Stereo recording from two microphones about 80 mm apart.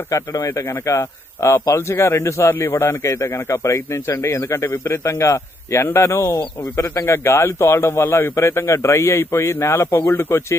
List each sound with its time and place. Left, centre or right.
0.1 s speech: left